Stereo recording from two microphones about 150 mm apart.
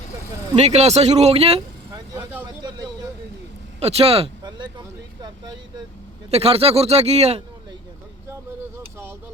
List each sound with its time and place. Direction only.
0.5 s speech: 45° right (ahead or behind)
1.9 s vehicle: 15° right (ahead or behind)
2.6 s a sound: 25° right (ahead or behind)
3.8 s speech: 40° right (ahead or behind)
4.4 s speech: 30° right (ahead or behind)
6.3 s speech: 40° right (ahead or behind)